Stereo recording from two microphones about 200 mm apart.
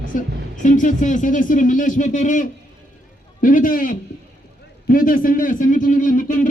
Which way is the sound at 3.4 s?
45° left (ahead or behind).